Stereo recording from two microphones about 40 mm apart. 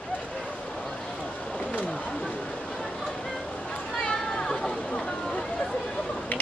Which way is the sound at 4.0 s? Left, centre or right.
Centre.